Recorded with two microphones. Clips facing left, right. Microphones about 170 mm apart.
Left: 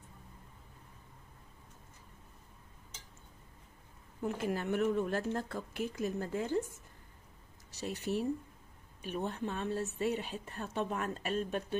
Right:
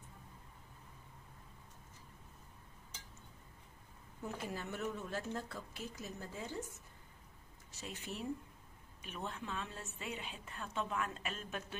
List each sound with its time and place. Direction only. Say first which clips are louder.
4.2 s speech: left 8 dB; 60° left (ahead or behind)
7.7 s a woman's voice: left 11 dB; 40° left (ahead or behind)